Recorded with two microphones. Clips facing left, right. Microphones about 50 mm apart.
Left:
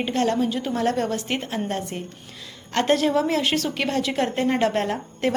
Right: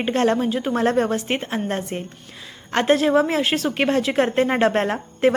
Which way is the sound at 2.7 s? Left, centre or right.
Right.